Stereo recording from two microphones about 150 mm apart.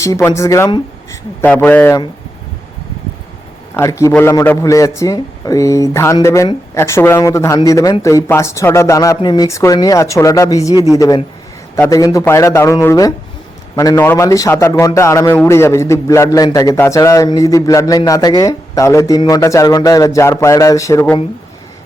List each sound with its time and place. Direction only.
0.0 s a man's voice: 20° left (ahead or behind)
3.8 s a man's voice: 20° left (ahead or behind)